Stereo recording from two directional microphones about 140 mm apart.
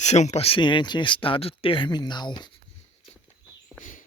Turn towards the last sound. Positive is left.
turn(degrees=65)  # may be behind; listen again after turning